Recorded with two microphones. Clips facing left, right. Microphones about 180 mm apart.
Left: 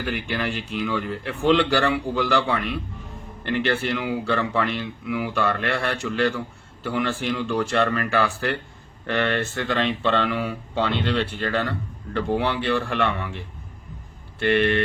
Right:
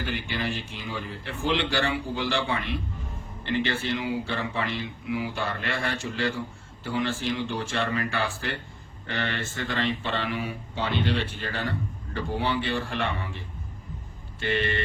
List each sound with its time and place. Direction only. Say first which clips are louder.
0.1 s speech: left 5 dB; 65° left (ahead or behind)